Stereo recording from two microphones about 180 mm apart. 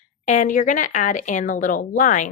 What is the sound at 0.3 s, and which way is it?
Speech, 45° left (ahead or behind).